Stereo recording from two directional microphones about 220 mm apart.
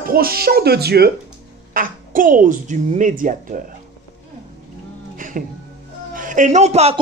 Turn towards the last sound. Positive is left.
turn(degrees=-30)  # may be behind; listen again after turning